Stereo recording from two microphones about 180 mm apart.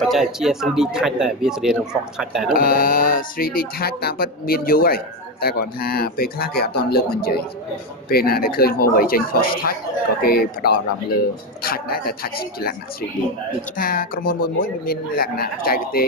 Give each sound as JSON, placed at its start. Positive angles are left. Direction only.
{"t": 0.0, "sound": "speech", "side_deg": 0}
{"t": 2.5, "sound": "speech", "side_deg": 50}
{"t": 13.7, "sound": "speech", "side_deg": 50}